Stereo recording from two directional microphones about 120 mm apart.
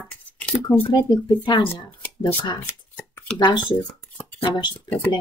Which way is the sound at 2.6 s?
15° left (ahead or behind).